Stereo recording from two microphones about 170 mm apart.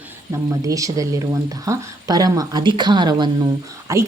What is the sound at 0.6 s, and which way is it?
Speech, 20° right (ahead or behind).